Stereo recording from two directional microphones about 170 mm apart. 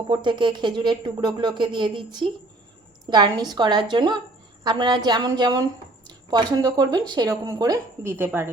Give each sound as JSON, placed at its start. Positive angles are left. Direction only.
{"t": 0.1, "sound": "a woman's voice", "side_deg": -25}